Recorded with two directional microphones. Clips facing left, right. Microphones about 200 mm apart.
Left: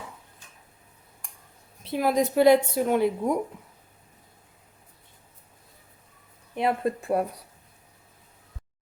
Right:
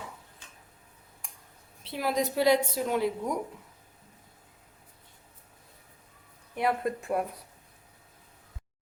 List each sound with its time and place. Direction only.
1.2 s a sound: centre (ahead or behind)
1.8 s a woman's voice: 50° left (ahead or behind)
6.5 s speech: 25° left (ahead or behind)